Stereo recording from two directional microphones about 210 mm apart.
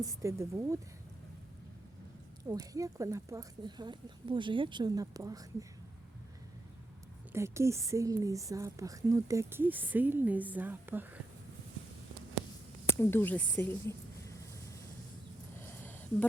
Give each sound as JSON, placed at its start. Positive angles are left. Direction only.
{"t": 0.0, "sound": "a woman's voice", "side_deg": -15}
{"t": 2.4, "sound": "a woman's voice", "side_deg": -15}
{"t": 7.3, "sound": "a woman's voice", "side_deg": -15}
{"t": 13.0, "sound": "speech", "side_deg": 10}
{"t": 15.5, "sound": "a sound", "side_deg": 10}